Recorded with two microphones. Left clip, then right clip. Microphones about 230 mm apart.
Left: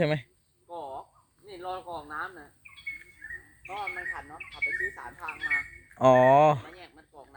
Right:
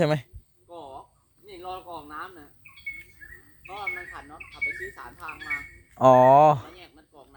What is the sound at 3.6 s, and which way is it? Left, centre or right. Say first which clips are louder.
Bird: right 1 dB; right.